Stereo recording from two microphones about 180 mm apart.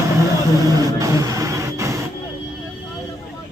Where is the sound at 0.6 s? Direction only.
20° right (ahead or behind).